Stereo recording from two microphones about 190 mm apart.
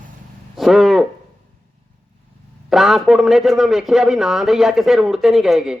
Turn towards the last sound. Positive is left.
turn(degrees=-5)  # may be behind; listen again after turning